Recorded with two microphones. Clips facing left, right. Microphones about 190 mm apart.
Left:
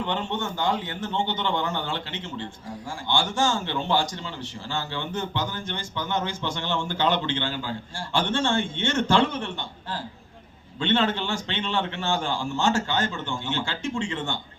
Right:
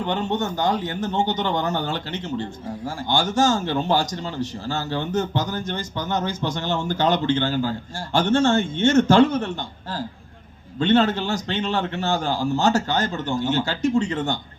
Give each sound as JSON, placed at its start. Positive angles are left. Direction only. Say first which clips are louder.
{"t": 0.0, "sound": "a man's voice", "louder": "right 4 dB", "side_deg": -40}